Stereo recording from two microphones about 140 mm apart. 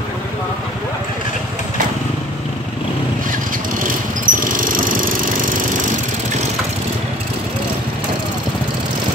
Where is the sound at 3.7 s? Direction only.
75° right (ahead or behind).